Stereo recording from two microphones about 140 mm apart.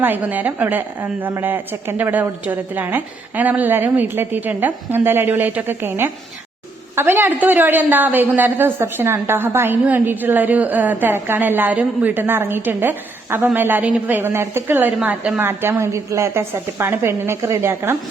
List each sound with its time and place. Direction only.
0.0 s a woman's voice: 15° right (ahead or behind)